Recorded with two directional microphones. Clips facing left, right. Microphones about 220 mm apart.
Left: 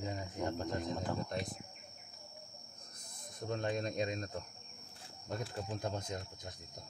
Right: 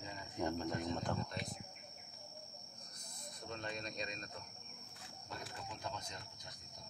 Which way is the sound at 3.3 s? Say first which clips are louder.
Left 9 dB; 50° left (ahead or behind).